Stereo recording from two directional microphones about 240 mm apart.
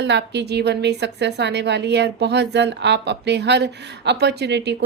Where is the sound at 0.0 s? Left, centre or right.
Right.